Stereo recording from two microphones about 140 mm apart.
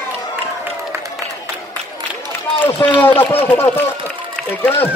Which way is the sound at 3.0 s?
15° left (ahead or behind).